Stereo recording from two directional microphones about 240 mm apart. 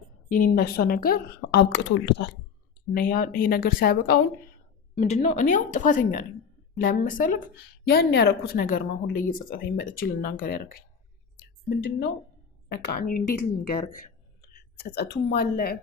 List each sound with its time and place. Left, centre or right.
0.3 s a woman's voice: left
2.9 s a woman's voice: left